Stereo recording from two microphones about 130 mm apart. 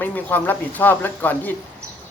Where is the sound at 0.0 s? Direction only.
15° left (ahead or behind).